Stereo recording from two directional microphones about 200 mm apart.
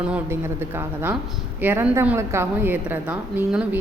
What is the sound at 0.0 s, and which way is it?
A woman's voice, 10° right (ahead or behind).